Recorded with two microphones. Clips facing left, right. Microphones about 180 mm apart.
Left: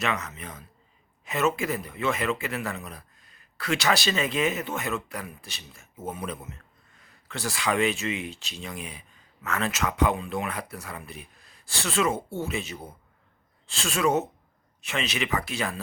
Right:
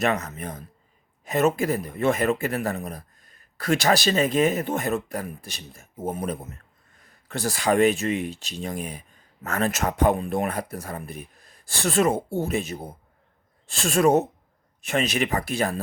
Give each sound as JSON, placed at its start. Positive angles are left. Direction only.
{"t": 0.0, "sound": "speech", "side_deg": -45}